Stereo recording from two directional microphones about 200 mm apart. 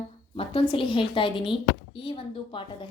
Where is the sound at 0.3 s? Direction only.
25° left (ahead or behind).